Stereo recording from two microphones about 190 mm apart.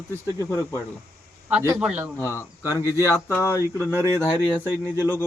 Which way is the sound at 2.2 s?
15° left (ahead or behind).